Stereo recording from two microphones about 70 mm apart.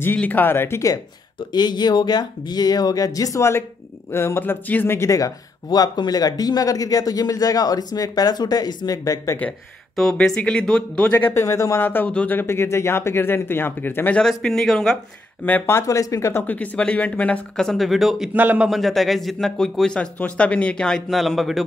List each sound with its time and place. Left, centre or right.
0.2 s speech: left
1.5 s speech: left
4.9 s speech: left
10.1 s a man's voice: centre
11.3 s speech: left
11.8 s speech: left
14.1 s a man's voice: centre
15.6 s speech: left
16.4 s speech: left
17.6 s speech: centre
18.3 s speech: right
18.7 s a man's voice: centre
21.1 s speech: centre